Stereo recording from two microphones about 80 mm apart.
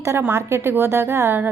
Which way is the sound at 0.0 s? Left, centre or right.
Right.